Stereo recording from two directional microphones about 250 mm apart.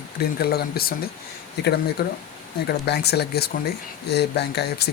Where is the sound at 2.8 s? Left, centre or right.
Left.